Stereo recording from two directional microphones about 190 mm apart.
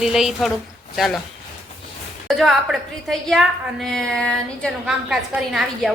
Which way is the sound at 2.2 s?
Centre (ahead or behind).